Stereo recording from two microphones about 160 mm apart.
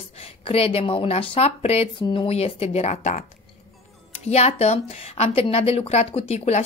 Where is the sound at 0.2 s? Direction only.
40° left (ahead or behind).